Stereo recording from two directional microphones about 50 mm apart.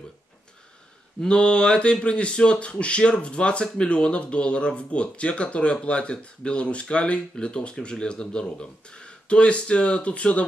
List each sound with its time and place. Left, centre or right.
1.2 s speech: centre